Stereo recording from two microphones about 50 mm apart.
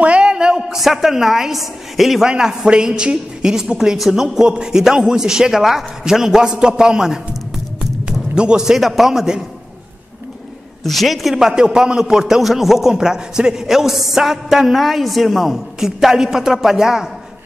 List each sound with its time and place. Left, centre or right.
0.0 s a sound: right
0.7 s a woman's voice: centre
2.2 s a woman's voice: centre
10.8 s a woman's voice: centre